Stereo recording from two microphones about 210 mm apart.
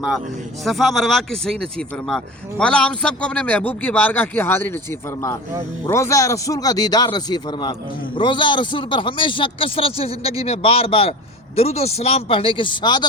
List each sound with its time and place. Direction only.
0.6 s a man's voice: centre (ahead or behind); by 13.1 s 20° left (ahead or behind)